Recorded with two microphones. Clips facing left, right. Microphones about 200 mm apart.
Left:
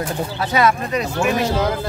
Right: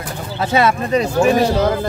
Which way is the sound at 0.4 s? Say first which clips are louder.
Right 3 dB; 25° right (ahead or behind).